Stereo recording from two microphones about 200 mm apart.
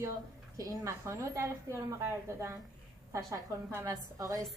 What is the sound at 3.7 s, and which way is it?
Speech, 15° right (ahead or behind).